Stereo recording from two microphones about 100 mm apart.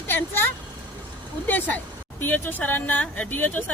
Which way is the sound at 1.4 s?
20° left (ahead or behind).